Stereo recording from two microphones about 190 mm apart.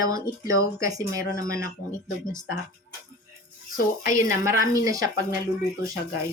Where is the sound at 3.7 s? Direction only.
45° left (ahead or behind).